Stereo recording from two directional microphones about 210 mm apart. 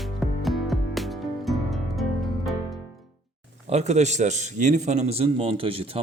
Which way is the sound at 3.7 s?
30° right (ahead or behind).